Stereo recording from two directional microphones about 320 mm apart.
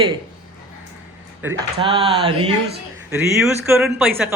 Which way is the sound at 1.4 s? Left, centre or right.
Centre.